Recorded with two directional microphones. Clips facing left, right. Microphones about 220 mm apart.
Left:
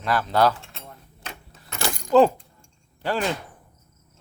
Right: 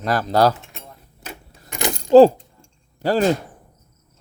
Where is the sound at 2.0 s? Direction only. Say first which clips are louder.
Right 7 dB; 30° right (ahead or behind).